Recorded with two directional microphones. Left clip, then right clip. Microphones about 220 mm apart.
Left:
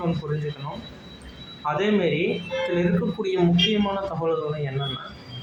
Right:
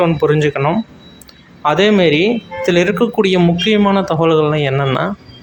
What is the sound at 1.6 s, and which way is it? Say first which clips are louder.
Speech: right 11 dB; 45° right (ahead or behind).